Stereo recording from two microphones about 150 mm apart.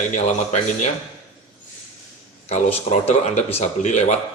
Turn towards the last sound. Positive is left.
turn(degrees=50)  # may be behind; listen again after turning